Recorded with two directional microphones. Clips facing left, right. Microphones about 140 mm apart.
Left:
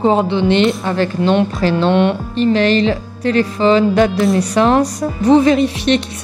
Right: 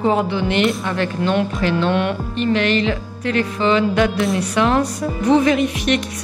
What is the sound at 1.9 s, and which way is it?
A woman's voice, 25° left (ahead or behind).